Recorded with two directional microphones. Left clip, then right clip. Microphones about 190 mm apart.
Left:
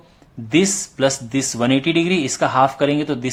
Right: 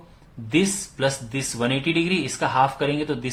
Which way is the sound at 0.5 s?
35° left (ahead or behind).